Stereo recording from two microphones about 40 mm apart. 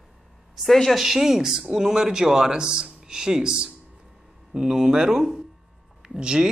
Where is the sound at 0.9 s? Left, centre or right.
Centre.